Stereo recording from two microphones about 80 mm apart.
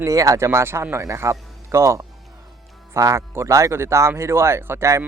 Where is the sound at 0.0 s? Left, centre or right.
Right.